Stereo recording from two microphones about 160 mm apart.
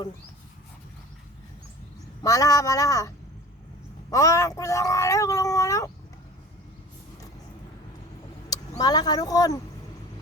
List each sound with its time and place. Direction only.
2.2 s speech: 20° left (ahead or behind)
4.1 s speech: 20° left (ahead or behind)
8.8 s speech: 25° left (ahead or behind)